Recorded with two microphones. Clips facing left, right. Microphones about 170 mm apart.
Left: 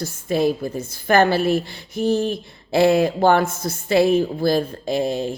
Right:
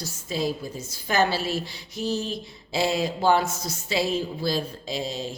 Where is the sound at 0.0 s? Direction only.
55° left (ahead or behind).